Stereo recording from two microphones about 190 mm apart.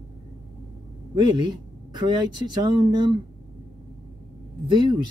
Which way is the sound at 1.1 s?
25° right (ahead or behind).